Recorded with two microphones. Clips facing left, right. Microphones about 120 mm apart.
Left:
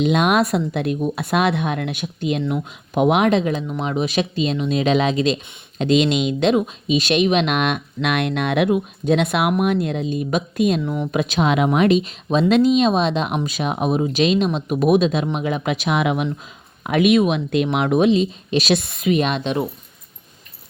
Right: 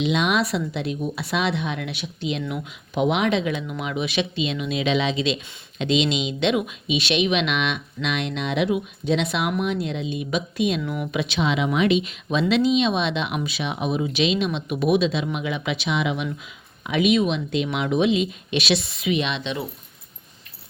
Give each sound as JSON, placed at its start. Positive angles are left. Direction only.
{"t": 0.0, "sound": "speech", "side_deg": 50}
{"t": 10.8, "sound": "speech", "side_deg": 30}
{"t": 11.1, "sound": "speech", "side_deg": 45}